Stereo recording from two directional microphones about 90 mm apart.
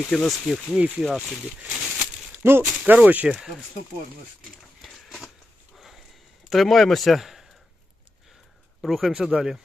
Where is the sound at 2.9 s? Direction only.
20° right (ahead or behind).